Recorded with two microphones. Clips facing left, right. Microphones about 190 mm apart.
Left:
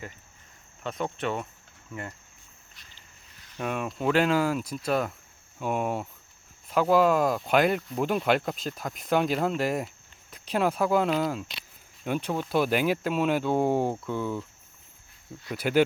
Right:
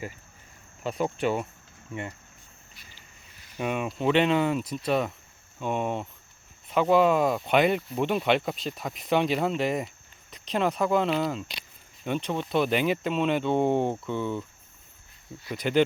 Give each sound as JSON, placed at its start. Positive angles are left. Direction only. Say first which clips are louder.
{"t": 0.9, "sound": "speech", "louder": "right 4 dB", "side_deg": -5}
{"t": 3.6, "sound": "speech", "louder": "right 2 dB", "side_deg": -5}
{"t": 15.5, "sound": "speech", "louder": "even", "side_deg": 5}